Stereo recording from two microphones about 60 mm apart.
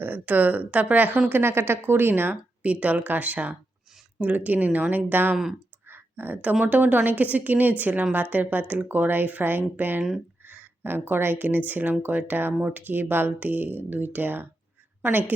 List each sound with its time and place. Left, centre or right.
0.0 s a woman's voice: right
1.3 s speech: right
2.6 s a woman's voice: right